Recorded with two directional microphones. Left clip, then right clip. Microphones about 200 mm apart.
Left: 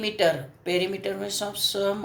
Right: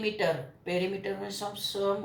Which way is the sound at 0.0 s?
50° left (ahead or behind).